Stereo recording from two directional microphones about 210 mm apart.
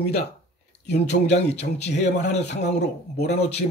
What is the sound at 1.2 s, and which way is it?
A man's voice, 30° left (ahead or behind).